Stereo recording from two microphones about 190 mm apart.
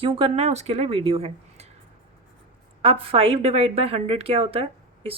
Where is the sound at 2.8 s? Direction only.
30° right (ahead or behind).